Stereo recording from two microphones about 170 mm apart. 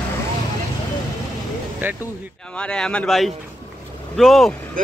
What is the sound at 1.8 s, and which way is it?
Speech, 10° right (ahead or behind).